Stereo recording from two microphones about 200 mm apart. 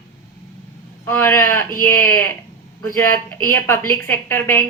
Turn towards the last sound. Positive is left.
turn(degrees=10)  # may be behind; listen again after turning